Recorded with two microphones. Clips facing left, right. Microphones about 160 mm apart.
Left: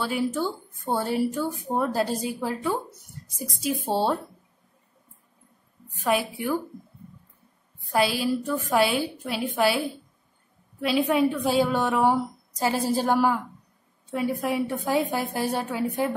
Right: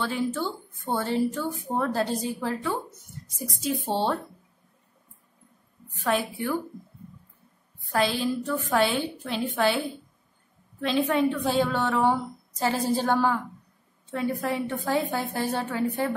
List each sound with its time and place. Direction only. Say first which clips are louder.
0.0 s speech: left 2 dB; 10° left (ahead or behind)
6.0 s speech: left 1 dB; 10° left (ahead or behind)
7.9 s speech: left 2 dB; 10° left (ahead or behind)